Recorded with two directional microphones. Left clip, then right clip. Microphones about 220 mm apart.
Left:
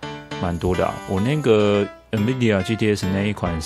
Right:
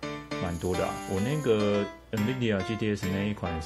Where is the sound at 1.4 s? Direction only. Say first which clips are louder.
Left 9 dB; 40° left (ahead or behind).